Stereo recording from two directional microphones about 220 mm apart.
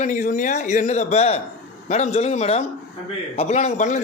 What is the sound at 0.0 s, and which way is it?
A man's voice, 35° left (ahead or behind).